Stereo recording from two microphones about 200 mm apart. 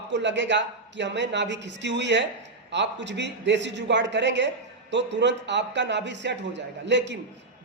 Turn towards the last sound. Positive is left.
turn(degrees=-60)  # may be behind; listen again after turning